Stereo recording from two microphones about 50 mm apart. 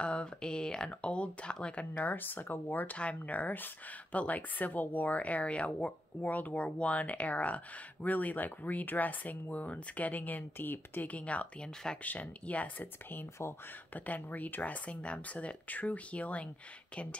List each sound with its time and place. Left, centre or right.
0.0 s speech: left
11.1 s speech: left